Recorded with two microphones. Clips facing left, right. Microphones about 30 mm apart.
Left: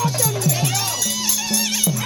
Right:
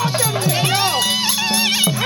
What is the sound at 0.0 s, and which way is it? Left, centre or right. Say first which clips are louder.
Music: right 2 dB; right.